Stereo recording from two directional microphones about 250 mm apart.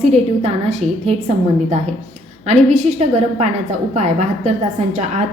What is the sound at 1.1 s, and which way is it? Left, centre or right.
A woman's voice, right.